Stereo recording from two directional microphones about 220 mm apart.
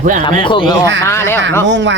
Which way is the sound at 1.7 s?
55° right (ahead or behind).